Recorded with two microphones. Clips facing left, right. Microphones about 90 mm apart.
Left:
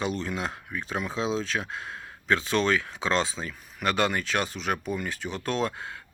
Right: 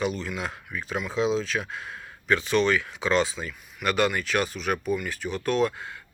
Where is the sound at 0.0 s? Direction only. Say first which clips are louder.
Right 1 dB; 30° left (ahead or behind).